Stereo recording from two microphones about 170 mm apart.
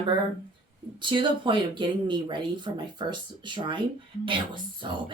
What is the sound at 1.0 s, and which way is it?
Speech, 30° right (ahead or behind).